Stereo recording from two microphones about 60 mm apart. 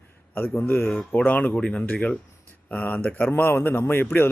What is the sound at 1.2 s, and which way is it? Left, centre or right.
Speech, left.